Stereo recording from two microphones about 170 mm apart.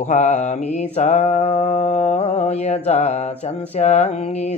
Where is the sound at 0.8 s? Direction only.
40° left (ahead or behind).